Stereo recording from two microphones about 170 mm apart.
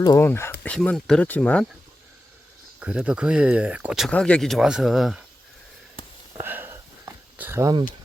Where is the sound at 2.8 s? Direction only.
5° right (ahead or behind).